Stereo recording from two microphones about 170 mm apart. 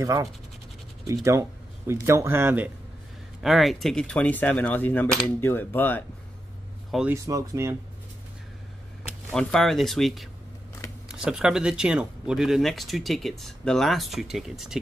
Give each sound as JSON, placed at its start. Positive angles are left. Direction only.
{"t": 0.0, "sound": "speech", "side_deg": -20}
{"t": 3.4, "sound": "coin", "side_deg": 0}
{"t": 6.9, "sound": "speech", "side_deg": -5}
{"t": 7.2, "sound": "speech", "side_deg": -15}
{"t": 9.3, "sound": "speech", "side_deg": 5}